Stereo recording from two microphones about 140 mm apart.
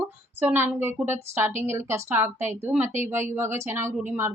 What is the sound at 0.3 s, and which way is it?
A woman's voice, 15° right (ahead or behind).